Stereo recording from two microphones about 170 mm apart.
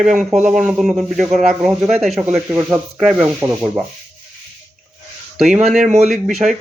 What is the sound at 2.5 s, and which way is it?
Speech, 15° right (ahead or behind).